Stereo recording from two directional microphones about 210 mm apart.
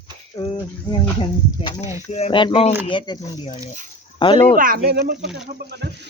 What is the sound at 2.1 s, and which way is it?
Speech, 30° left (ahead or behind).